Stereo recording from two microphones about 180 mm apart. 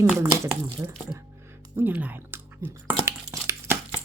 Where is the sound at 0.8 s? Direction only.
15° right (ahead or behind).